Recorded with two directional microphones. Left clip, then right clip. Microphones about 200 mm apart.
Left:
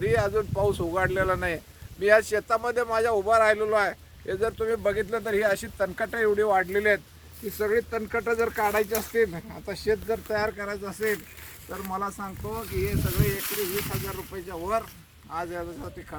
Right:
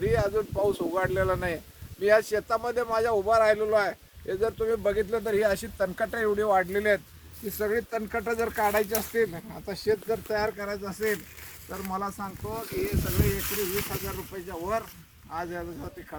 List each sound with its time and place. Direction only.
0.0 s speech: 10° right (ahead or behind)
9.9 s speech: 10° left (ahead or behind)
13.4 s speech: 20° left (ahead or behind)
13.8 s speech: centre (ahead or behind)